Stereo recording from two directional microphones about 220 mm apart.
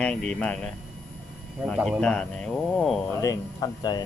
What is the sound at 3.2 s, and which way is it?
Speech, 15° left (ahead or behind).